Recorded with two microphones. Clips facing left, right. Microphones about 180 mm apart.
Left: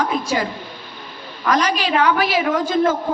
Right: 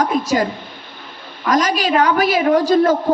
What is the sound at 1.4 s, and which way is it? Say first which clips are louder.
A woman's voice: right 2 dB; 45° right (ahead or behind).